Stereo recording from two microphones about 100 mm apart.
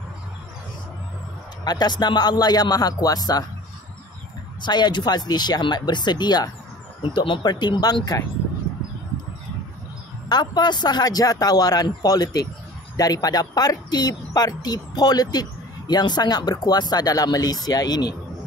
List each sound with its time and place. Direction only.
1.6 s speech: 45° left (ahead or behind)
4.6 s speech: 45° left (ahead or behind)
7.0 s speech: 60° left (ahead or behind); by 8.2 s 40° left (ahead or behind)
10.2 s speech: 45° left (ahead or behind)